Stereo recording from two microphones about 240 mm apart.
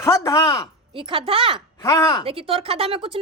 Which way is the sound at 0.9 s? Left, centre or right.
Right.